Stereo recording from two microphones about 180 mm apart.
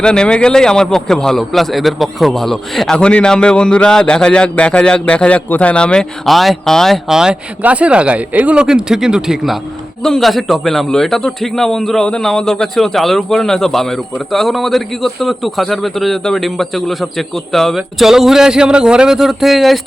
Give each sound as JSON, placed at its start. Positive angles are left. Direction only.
{"t": 0.0, "sound": "a man's voice", "side_deg": 5}